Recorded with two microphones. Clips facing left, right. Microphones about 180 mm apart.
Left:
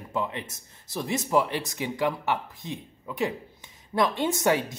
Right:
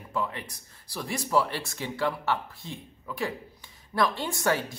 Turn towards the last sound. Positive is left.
turn(degrees=20)  # may be behind; listen again after turning